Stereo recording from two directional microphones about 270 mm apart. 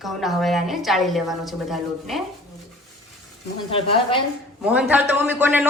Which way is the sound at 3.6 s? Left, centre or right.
Centre.